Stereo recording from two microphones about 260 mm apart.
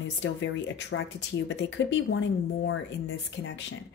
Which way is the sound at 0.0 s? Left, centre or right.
Left.